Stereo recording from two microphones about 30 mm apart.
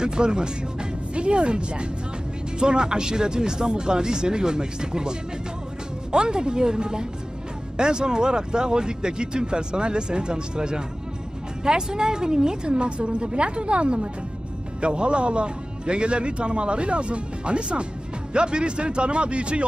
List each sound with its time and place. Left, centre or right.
0.0 s a man's voice: right